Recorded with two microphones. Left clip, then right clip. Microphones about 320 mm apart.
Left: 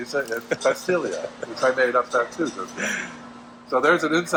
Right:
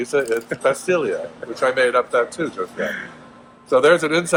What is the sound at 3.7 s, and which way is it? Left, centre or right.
Speech, right.